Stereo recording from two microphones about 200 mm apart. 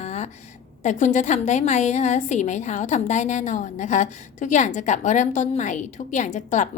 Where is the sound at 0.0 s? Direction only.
35° left (ahead or behind).